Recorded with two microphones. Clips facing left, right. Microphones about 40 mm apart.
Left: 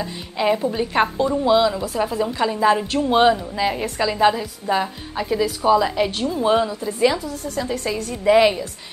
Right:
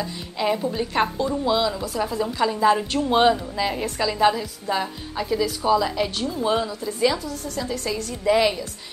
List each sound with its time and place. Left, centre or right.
0.0 s a woman's voice: centre